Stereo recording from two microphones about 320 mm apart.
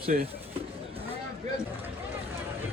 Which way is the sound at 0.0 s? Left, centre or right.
Right.